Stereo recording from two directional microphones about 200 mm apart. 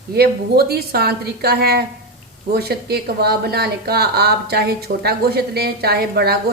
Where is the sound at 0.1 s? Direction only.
50° right (ahead or behind).